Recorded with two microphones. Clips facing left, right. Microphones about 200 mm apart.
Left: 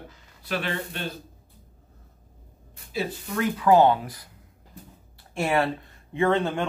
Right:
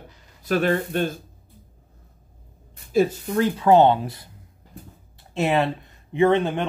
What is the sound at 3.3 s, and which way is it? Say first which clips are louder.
Speech: right 2 dB; 30° right (ahead or behind).